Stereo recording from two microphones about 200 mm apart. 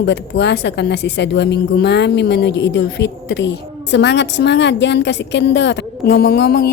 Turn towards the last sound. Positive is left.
turn(degrees=55)  # may be behind; listen again after turning